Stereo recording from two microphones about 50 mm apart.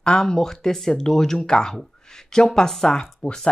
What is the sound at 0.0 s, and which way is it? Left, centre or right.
Speech, centre.